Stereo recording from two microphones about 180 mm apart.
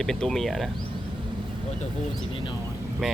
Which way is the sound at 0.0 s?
5° left (ahead or behind).